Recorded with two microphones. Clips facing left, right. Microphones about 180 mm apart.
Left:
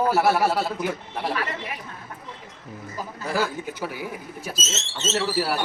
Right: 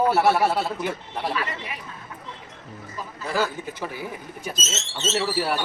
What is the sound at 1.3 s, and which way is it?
Speech, 45° left (ahead or behind).